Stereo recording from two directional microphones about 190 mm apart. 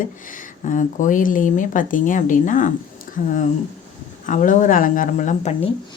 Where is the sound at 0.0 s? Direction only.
45° left (ahead or behind).